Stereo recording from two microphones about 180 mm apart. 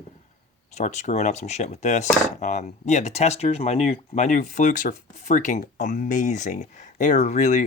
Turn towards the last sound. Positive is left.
turn(degrees=40)  # may be behind; listen again after turning